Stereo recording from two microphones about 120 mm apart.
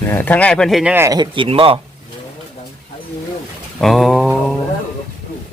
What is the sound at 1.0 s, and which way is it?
Speech, 35° right (ahead or behind).